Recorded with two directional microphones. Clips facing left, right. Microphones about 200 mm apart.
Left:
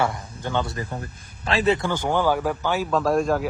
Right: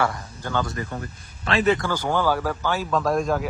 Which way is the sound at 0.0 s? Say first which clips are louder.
Left 1 dB; 25° left (ahead or behind).